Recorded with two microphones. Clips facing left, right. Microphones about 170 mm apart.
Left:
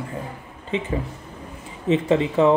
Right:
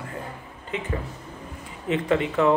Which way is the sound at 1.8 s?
25° left (ahead or behind).